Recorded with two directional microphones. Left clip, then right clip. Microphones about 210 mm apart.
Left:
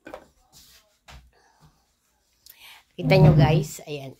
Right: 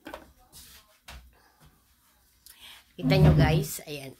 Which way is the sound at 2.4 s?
25° left (ahead or behind).